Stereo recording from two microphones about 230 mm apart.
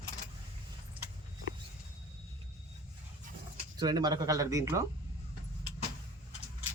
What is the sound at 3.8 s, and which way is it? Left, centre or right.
Speech, centre.